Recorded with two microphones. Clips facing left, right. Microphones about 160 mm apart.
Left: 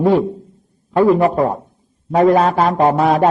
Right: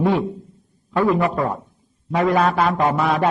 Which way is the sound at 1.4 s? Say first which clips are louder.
Left 6 dB; 30° left (ahead or behind).